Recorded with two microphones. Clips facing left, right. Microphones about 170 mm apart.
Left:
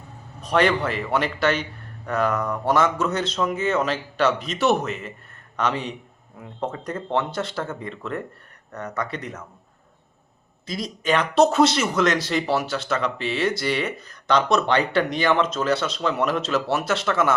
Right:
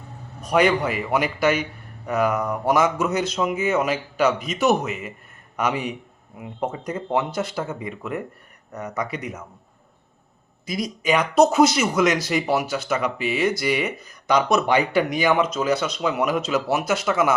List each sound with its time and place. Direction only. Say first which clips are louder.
0.4 s speech: right 1 dB; 10° right (ahead or behind)
4.3 s speech: right 1 dB; centre (ahead or behind)
10.7 s speech: right 1 dB; 20° right (ahead or behind); by 11.9 s centre (ahead or behind)
11.9 s speech: right 1 dB; 15° right (ahead or behind)